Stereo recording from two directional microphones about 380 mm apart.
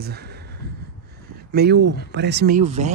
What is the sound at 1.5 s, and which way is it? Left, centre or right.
Speech, right.